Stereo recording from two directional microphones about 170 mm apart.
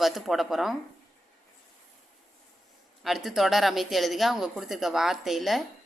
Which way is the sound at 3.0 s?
Centre (ahead or behind).